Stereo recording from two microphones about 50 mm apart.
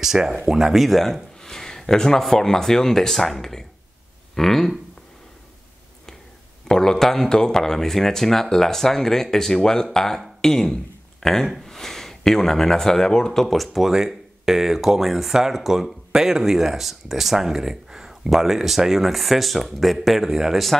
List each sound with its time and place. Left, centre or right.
0.0 s speech: centre
6.7 s speech: centre